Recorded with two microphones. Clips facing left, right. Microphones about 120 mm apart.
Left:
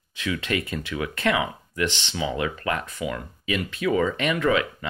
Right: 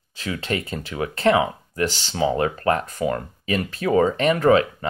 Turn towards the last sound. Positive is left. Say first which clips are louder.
# right 6 dB
turn(degrees=-35)  # may be behind; listen again after turning